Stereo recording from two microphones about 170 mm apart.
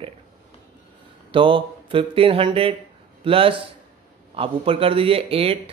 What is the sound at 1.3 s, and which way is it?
A man's voice, 30° right (ahead or behind).